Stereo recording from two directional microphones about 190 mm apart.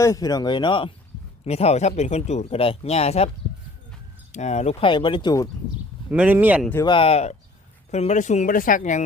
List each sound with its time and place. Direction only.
0.0 s speech: 20° left (ahead or behind); by 3.2 s 35° left (ahead or behind)
4.3 s speech: 35° left (ahead or behind); by 5.5 s 20° left (ahead or behind)
6.1 s speech: 10° right (ahead or behind)
6.8 s speech: 30° left (ahead or behind)